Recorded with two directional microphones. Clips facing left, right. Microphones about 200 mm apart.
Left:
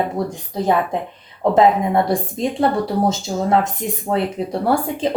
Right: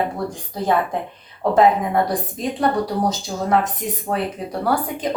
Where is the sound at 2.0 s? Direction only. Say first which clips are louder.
Left 4 dB; 25° left (ahead or behind).